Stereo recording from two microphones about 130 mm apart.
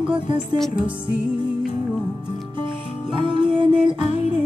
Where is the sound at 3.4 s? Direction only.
40° right (ahead or behind).